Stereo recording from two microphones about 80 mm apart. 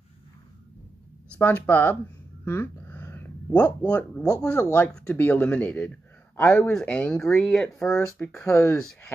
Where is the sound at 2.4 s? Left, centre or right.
Left.